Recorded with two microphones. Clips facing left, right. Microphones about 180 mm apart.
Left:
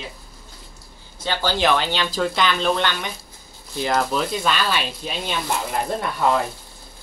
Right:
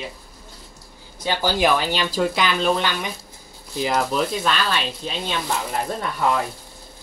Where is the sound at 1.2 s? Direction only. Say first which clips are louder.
Right 1 dB; 15° right (ahead or behind); by 5.3 s 5° left (ahead or behind).